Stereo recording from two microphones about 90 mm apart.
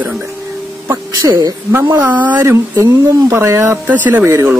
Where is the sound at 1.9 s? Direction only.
20° right (ahead or behind).